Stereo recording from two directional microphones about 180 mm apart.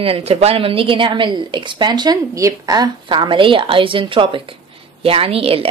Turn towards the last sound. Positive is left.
turn(degrees=-35)  # may be behind; listen again after turning